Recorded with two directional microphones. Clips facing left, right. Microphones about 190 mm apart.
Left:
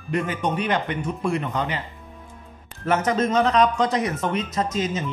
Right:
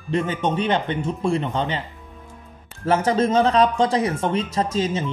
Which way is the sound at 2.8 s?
30° right (ahead or behind).